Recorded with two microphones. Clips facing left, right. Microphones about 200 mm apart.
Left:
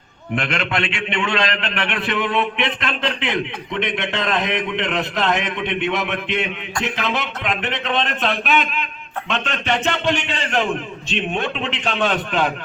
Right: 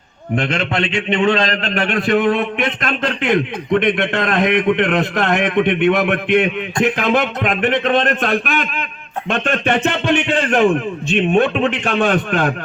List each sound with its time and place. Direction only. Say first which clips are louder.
0.3 s a man's voice: right 4 dB; 40° right (ahead or behind)